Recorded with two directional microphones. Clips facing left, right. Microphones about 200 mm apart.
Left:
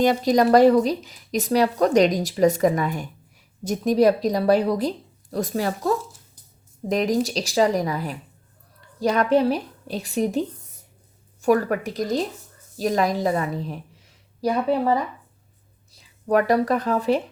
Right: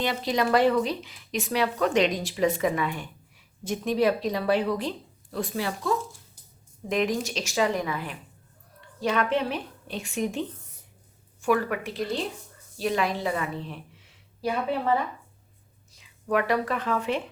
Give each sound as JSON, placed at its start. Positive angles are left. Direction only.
{"t": 0.0, "sound": "speech", "side_deg": 45}
{"t": 6.0, "sound": "a sound", "side_deg": 0}
{"t": 6.8, "sound": "a woman's voice", "side_deg": 40}